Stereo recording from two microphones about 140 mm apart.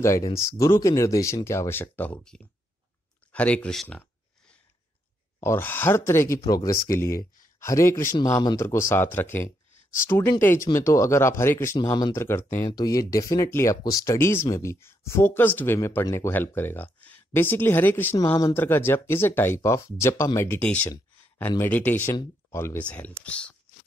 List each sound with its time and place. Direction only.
0.0 s speech: 20° left (ahead or behind); by 4.0 s 5° left (ahead or behind)
5.4 s speech: 15° left (ahead or behind)
12.3 s speech: 15° left (ahead or behind)
12.6 s speech: 25° left (ahead or behind); by 23.5 s 10° left (ahead or behind)